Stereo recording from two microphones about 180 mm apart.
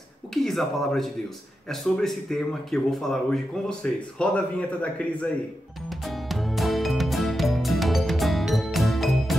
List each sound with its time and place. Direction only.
0.3 s speech: centre (ahead or behind)
5.9 s music: centre (ahead or behind)